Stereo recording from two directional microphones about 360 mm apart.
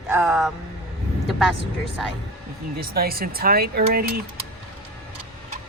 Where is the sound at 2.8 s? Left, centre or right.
Right.